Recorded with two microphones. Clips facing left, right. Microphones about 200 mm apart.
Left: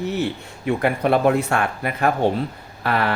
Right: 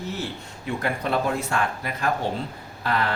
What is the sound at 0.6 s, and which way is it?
Speech, 60° left (ahead or behind).